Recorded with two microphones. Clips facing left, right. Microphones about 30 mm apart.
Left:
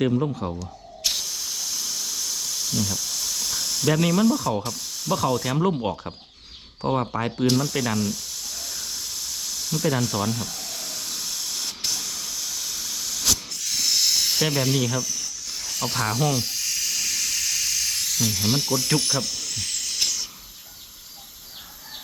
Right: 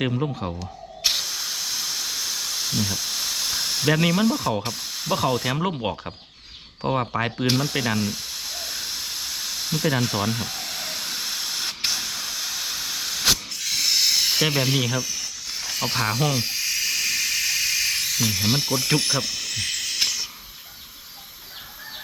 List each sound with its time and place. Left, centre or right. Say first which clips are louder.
0.1 s speech: left 2 dB; centre
0.6 s steam: right 3 dB; right
4.6 s spray: right 1 dB; right
6.8 s spray: even; centre
13.5 s hiss: right 2 dB; right